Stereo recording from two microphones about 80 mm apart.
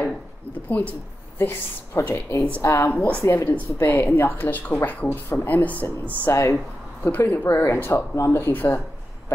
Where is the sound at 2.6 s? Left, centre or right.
Left.